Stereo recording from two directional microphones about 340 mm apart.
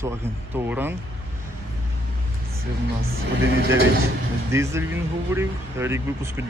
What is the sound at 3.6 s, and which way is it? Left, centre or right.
Speech, right.